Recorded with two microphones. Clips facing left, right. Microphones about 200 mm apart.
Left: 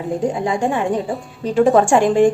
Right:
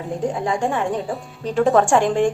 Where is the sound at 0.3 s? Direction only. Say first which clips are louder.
Left 2 dB; 5° left (ahead or behind).